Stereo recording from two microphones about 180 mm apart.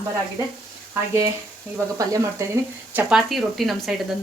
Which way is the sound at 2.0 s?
20° right (ahead or behind).